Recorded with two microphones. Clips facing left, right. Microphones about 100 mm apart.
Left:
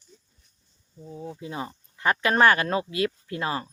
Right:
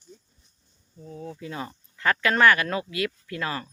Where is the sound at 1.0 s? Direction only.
20° left (ahead or behind).